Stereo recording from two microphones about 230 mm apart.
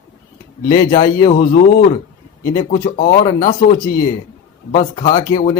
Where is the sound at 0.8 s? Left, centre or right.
Left.